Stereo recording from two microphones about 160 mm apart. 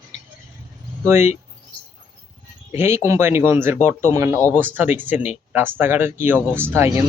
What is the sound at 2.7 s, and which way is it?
Speech, 15° right (ahead or behind).